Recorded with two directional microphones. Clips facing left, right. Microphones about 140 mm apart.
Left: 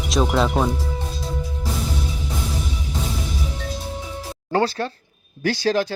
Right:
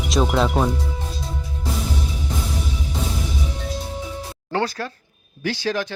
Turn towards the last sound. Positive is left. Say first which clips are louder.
# left 4 dB
turn(degrees=35)  # may be behind; listen again after turning